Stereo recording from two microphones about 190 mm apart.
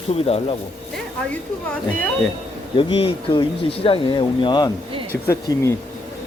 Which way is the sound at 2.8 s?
30° left (ahead or behind).